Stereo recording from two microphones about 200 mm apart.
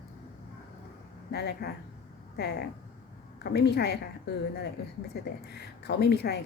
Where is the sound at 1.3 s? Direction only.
55° left (ahead or behind).